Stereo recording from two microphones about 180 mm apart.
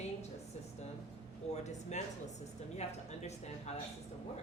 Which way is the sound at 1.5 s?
40° left (ahead or behind).